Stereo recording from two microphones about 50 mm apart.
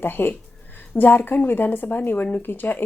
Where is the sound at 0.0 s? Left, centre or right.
Left.